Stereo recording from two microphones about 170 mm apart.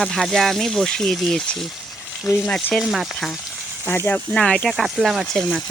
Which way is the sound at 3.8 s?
10° left (ahead or behind).